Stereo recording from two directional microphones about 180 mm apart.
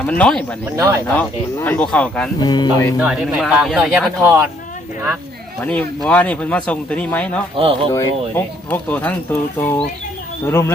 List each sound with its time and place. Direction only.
0.0 s speech: 5° left (ahead or behind)
0.8 s speech: 20° right (ahead or behind)
1.1 s speech: 10° left (ahead or behind)
2.4 s speech: 25° left (ahead or behind)
3.0 s speech: 5° right (ahead or behind)
4.2 s speech: 15° right (ahead or behind)
5.6 s speech: 5° left (ahead or behind)
7.5 s speech: 30° right (ahead or behind)
7.9 s speech: 10° left (ahead or behind)